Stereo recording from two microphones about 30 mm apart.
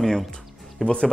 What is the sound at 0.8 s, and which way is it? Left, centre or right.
Speech, left.